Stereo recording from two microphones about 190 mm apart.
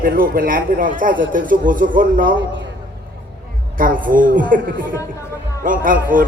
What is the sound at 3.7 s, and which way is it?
Speech, 45° right (ahead or behind).